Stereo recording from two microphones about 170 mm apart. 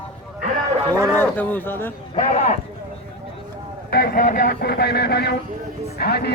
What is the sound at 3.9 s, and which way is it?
Speech, 65° left (ahead or behind).